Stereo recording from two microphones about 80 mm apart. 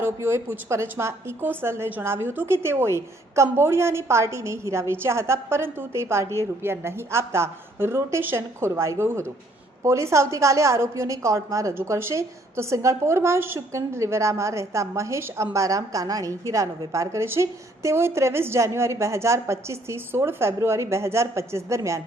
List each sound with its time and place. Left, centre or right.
0.0 s a woman's voice: right
11.7 s a woman's voice: right